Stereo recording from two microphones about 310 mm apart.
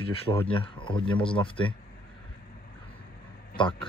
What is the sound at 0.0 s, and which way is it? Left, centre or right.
Speech, centre.